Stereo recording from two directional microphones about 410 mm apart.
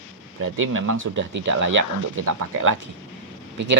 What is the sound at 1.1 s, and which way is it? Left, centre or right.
Speech, right.